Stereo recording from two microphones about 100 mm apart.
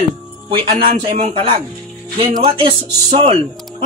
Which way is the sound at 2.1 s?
55° right (ahead or behind).